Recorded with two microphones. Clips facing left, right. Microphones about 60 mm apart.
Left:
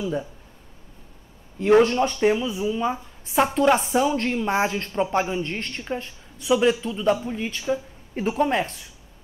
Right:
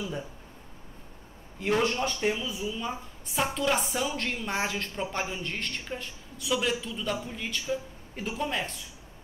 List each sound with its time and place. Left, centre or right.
1.7 s a woman's voice: left
2.1 s speech: left
2.4 s a woman's voice: left